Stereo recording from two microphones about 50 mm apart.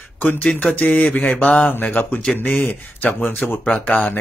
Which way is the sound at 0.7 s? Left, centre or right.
Left.